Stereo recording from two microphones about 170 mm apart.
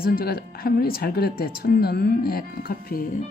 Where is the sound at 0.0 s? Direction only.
60° left (ahead or behind).